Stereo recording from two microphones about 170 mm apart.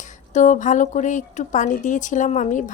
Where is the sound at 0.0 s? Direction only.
45° left (ahead or behind).